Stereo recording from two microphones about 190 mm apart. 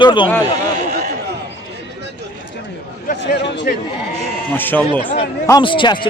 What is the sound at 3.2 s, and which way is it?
Speech, 70° left (ahead or behind).